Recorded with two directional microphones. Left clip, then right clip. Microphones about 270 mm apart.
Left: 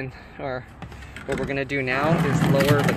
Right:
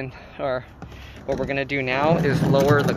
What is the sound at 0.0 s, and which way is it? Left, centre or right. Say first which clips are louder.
Speech: right 4 dB; centre.